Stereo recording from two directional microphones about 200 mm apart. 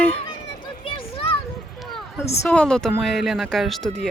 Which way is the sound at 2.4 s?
5° left (ahead or behind).